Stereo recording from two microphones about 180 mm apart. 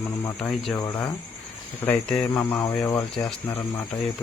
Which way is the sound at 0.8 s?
20° left (ahead or behind).